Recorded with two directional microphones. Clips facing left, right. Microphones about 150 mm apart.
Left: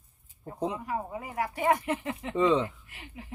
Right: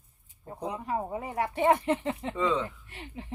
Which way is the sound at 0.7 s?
25° right (ahead or behind).